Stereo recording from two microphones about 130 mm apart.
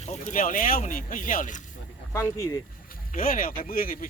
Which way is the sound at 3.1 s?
90° left.